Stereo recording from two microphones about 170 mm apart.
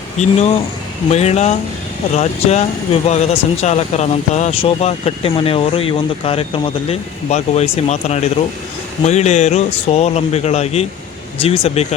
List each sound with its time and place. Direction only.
0.2 s speech: 40° left (ahead or behind)